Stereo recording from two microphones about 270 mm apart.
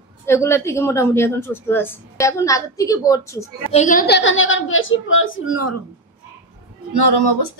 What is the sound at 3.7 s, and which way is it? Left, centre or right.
A woman's voice, left.